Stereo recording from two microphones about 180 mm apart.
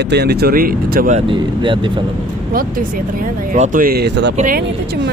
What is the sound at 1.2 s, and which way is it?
Speech, 30° right (ahead or behind).